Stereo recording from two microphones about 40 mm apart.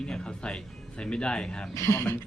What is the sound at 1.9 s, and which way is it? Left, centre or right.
Speech, left.